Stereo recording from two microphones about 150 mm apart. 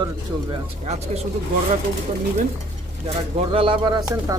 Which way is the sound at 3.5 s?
35° right (ahead or behind).